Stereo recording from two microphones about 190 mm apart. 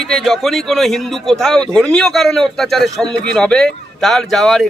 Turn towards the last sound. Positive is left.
turn(degrees=0)  # may be behind; listen again after turning